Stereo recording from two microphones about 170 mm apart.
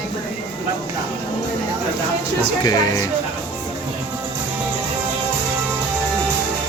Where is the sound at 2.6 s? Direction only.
20° left (ahead or behind).